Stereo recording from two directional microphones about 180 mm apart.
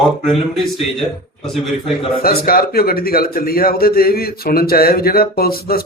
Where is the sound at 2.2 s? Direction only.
55° left (ahead or behind).